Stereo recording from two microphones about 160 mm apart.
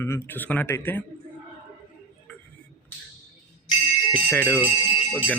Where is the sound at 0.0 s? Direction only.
15° left (ahead or behind).